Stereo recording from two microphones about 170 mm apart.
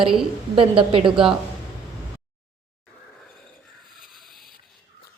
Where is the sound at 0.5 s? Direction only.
30° right (ahead or behind).